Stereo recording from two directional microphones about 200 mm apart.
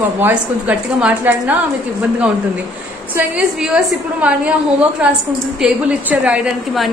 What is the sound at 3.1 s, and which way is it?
A woman's voice, 5° right (ahead or behind).